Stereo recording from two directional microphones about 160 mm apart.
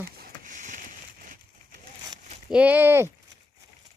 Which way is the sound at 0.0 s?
65° right (ahead or behind).